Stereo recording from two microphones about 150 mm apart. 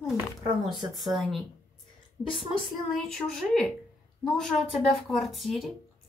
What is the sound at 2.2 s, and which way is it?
Speech, 25° left (ahead or behind).